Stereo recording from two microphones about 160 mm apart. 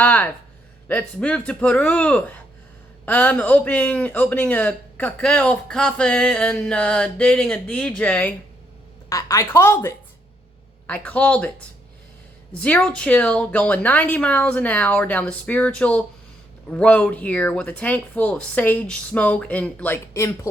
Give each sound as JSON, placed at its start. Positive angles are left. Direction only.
{"t": 0.0, "sound": "a sound", "side_deg": 10}
{"t": 0.9, "sound": "speech", "side_deg": 5}
{"t": 9.0, "sound": "speech", "side_deg": 20}
{"t": 12.5, "sound": "speech", "side_deg": 10}